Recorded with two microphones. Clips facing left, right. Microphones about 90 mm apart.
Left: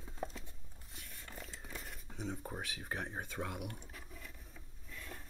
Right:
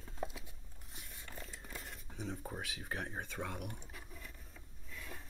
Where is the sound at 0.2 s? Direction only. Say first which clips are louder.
Even; 5° right (ahead or behind).